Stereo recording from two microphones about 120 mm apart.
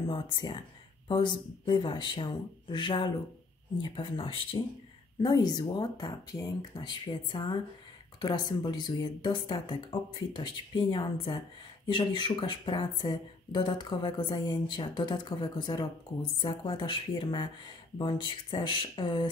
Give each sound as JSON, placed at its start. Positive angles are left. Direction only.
{"t": 0.0, "sound": "speech", "side_deg": 40}
{"t": 5.2, "sound": "speech", "side_deg": 35}